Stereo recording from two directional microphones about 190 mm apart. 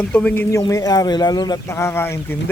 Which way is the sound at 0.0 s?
10° left (ahead or behind).